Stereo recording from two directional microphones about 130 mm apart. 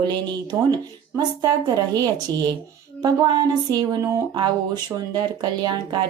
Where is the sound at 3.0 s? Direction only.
30° right (ahead or behind).